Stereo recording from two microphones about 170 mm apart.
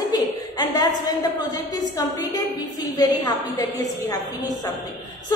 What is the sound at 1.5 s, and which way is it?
A woman's voice, 25° left (ahead or behind).